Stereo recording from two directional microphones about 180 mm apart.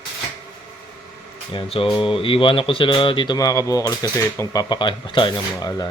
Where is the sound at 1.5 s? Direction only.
30° left (ahead or behind).